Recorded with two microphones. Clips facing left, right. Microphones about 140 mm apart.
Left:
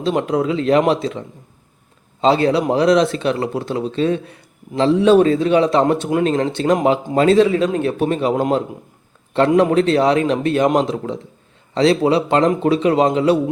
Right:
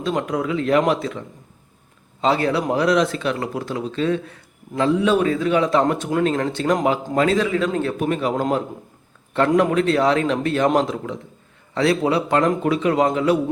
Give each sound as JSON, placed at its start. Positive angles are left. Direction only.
{"t": 0.0, "sound": "speech", "side_deg": 25}
{"t": 2.2, "sound": "a man's voice", "side_deg": 25}